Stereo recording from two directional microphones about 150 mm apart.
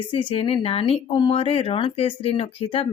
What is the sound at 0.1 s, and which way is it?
Speech, 35° left (ahead or behind).